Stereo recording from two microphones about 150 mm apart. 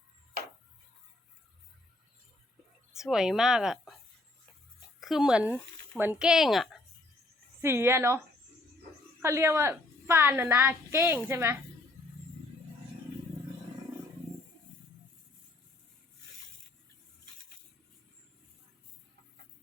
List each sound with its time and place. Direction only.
2.9 s speech: 5° right (ahead or behind)
4.9 s speech: centre (ahead or behind)
7.6 s a woman's voice: 15° right (ahead or behind)
9.2 s a woman's voice: 15° right (ahead or behind)